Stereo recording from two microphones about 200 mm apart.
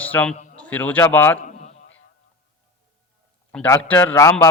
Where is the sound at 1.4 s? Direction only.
35° left (ahead or behind).